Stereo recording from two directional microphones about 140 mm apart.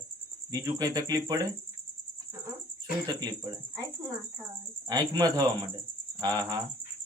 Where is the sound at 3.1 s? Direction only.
30° right (ahead or behind).